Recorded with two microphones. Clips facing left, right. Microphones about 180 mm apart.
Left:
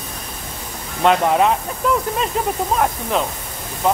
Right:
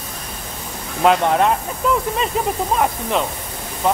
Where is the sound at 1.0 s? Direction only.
Centre (ahead or behind).